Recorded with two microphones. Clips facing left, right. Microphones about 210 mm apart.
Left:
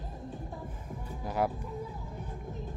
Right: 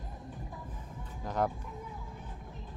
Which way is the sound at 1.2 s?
10° left (ahead or behind).